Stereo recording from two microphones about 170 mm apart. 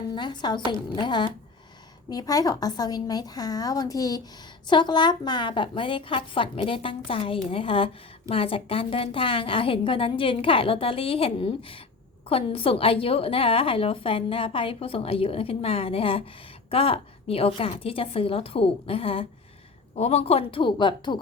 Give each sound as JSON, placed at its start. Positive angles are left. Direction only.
{"t": 0.1, "sound": "a woman's voice", "side_deg": 25}